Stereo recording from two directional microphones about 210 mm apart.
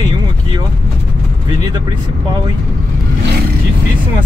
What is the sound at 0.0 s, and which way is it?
Vehicle, 20° right (ahead or behind).